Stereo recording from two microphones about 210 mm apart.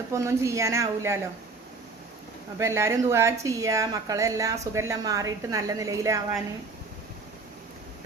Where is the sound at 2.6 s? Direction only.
15° right (ahead or behind).